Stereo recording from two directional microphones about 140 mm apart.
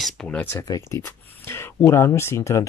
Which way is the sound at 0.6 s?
25° left (ahead or behind).